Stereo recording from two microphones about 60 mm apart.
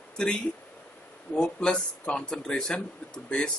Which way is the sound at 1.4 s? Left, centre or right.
Centre.